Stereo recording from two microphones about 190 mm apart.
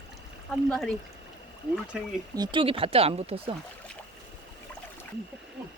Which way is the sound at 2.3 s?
25° right (ahead or behind).